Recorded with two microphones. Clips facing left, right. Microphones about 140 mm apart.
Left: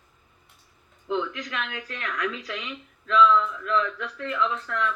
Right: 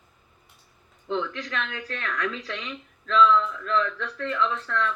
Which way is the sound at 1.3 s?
35° right (ahead or behind).